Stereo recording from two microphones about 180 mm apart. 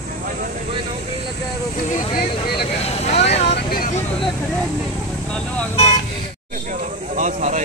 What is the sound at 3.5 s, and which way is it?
Speech, 55° left (ahead or behind).